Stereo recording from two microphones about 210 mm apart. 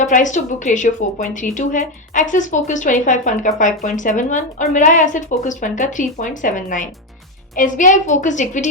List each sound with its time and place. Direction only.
0.0 s a woman's voice: 35° left (ahead or behind)